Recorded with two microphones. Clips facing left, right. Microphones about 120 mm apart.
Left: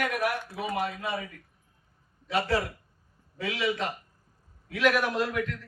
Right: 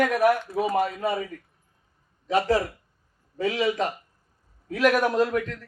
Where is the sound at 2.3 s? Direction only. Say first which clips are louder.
Right 5 dB; 40° right (ahead or behind).